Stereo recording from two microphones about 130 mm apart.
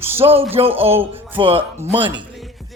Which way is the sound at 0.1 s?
15° right (ahead or behind).